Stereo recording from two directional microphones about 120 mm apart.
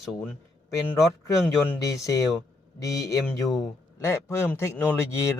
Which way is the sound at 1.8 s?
25° left (ahead or behind).